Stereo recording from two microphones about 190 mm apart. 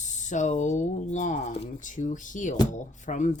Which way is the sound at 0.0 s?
40° left (ahead or behind).